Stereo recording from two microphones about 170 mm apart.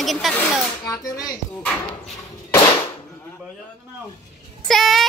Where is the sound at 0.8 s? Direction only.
20° left (ahead or behind).